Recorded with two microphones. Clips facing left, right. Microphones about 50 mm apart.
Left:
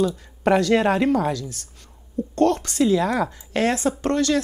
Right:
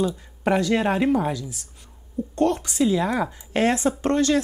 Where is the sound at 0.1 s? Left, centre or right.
Centre.